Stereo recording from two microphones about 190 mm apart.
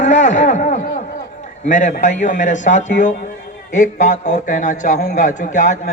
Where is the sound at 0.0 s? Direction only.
40° left (ahead or behind).